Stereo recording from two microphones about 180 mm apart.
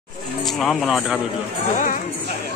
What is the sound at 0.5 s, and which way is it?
Speech, centre (ahead or behind).